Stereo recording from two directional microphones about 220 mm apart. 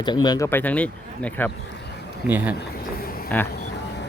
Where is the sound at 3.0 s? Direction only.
40° left (ahead or behind).